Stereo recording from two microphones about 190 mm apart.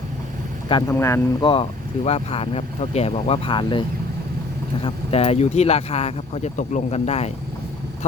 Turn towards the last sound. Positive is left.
turn(degrees=35)  # may be behind; listen again after turning